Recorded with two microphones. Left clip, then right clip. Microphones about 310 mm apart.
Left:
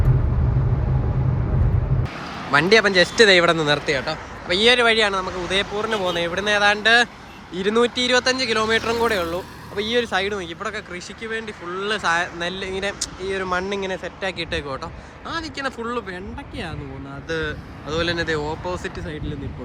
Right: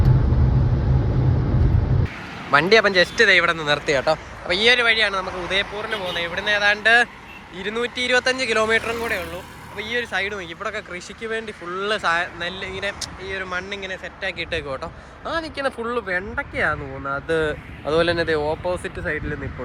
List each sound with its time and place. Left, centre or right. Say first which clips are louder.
2.5 s speech: even; centre
17.9 s speech: right 3 dB; centre